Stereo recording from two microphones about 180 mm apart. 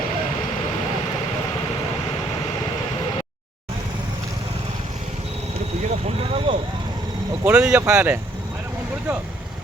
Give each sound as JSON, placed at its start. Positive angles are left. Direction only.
{"t": 5.9, "sound": "vehicle", "side_deg": -30}
{"t": 7.4, "sound": "speech", "side_deg": -5}